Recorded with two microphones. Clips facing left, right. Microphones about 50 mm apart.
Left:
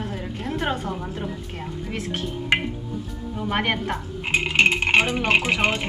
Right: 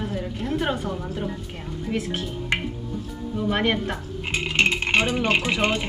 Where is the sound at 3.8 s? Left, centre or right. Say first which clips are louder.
Left 2 dB; centre.